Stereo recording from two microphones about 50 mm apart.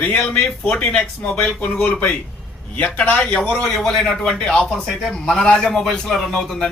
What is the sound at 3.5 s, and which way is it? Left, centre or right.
Speech, centre.